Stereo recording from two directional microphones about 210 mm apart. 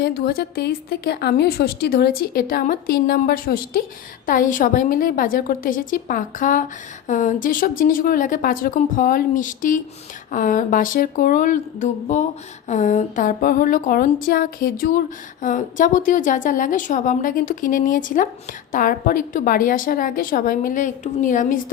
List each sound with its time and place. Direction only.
0.0 s a woman's voice: 45° left (ahead or behind)